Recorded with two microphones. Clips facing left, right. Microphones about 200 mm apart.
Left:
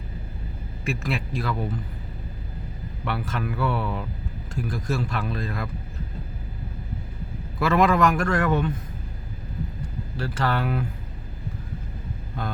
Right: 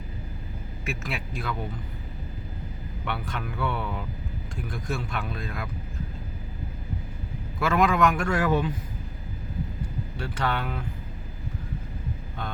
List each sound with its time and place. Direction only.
0.9 s a man's voice: centre (ahead or behind)
3.0 s a man's voice: centre (ahead or behind)
7.6 s a man's voice: centre (ahead or behind)
10.2 s a man's voice: 5° left (ahead or behind)